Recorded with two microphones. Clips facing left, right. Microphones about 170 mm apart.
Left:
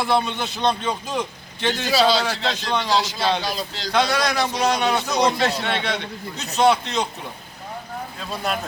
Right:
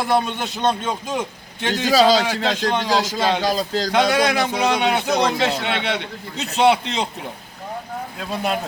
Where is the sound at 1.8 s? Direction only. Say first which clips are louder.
Right 4 dB; 45° right (ahead or behind).